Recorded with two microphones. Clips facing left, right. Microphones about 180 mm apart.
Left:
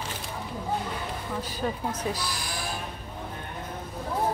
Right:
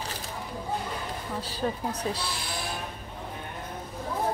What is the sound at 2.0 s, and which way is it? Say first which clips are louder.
Speech: left 1 dB; 30° right (ahead or behind).